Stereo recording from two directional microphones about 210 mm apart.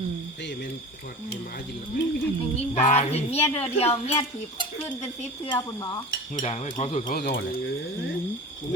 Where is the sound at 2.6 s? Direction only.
30° left (ahead or behind).